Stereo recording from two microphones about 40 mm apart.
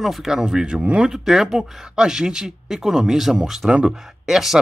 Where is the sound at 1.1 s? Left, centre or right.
Centre.